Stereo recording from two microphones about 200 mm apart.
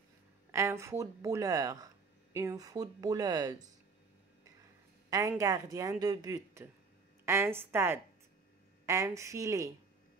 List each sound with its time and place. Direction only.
0.5 s speech: 15° right (ahead or behind)
5.4 s speech: 15° right (ahead or behind)